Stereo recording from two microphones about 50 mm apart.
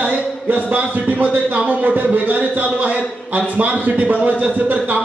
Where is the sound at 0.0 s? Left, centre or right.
Right.